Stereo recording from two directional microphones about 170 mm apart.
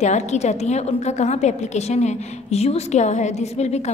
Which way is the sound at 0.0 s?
40° left (ahead or behind).